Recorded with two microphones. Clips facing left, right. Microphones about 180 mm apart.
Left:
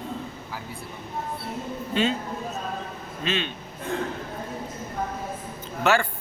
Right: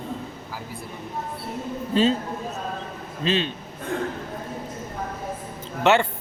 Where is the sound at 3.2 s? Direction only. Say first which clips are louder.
Right 4 dB; 35° right (ahead or behind).